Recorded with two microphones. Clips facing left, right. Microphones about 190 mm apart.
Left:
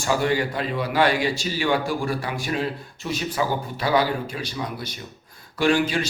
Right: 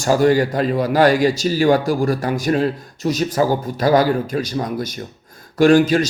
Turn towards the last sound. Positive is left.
turn(degrees=-40)  # may be behind; listen again after turning